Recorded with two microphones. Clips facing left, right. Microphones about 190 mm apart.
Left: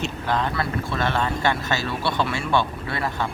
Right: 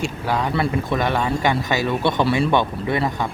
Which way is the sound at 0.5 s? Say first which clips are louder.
Right 5 dB; 20° right (ahead or behind).